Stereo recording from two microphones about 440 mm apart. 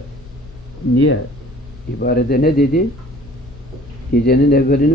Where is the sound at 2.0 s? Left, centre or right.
Left.